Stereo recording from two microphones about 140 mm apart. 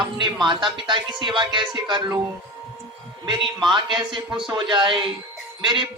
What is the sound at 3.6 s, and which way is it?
Speech, 35° right (ahead or behind).